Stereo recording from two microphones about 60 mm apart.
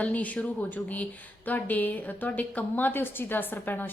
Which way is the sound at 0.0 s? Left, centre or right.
Left.